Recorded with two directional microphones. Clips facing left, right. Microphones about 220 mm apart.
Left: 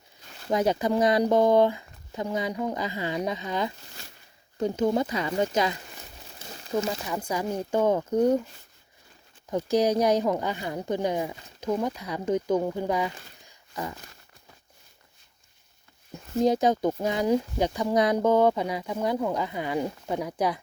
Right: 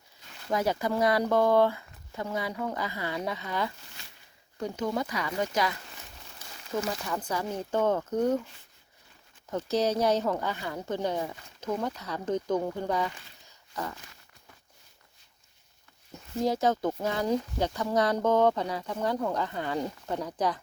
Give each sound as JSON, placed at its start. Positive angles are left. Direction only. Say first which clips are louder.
{"t": 0.4, "sound": "speech", "louder": "left 4 dB", "side_deg": 20}
{"t": 6.5, "sound": "a sound", "louder": "left 4 dB", "side_deg": 35}
{"t": 7.0, "sound": "speech", "louder": "left 3 dB", "side_deg": 10}
{"t": 9.5, "sound": "speech", "louder": "left 4 dB", "side_deg": 15}
{"t": 13.4, "sound": "a sound", "louder": "left 2 dB", "side_deg": 10}
{"t": 16.4, "sound": "speech", "louder": "left 4 dB", "side_deg": 15}